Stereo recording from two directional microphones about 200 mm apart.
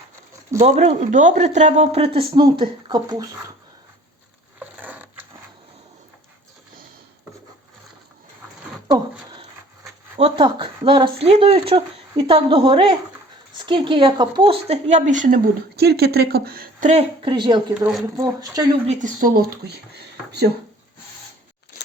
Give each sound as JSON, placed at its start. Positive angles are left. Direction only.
{"t": 0.6, "sound": "a woman's voice", "side_deg": -30}
{"t": 4.6, "sound": "patter", "side_deg": -10}
{"t": 8.9, "sound": "a sound", "side_deg": -25}
{"t": 10.2, "sound": "a woman's voice", "side_deg": -25}
{"t": 16.9, "sound": "speech", "side_deg": -30}
{"t": 18.9, "sound": "speech", "side_deg": -40}